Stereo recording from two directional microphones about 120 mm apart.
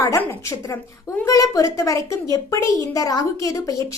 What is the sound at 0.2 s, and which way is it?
A woman's voice, 20° left (ahead or behind).